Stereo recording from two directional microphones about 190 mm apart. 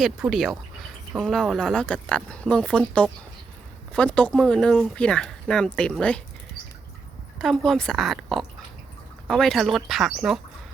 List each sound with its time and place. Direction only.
0.0 s speech: centre (ahead or behind)
7.3 s speech: centre (ahead or behind)